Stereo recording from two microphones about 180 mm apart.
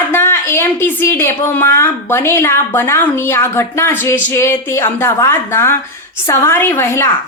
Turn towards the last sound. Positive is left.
turn(degrees=15)  # may be behind; listen again after turning